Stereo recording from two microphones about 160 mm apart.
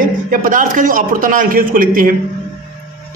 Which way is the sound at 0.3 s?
60° right (ahead or behind).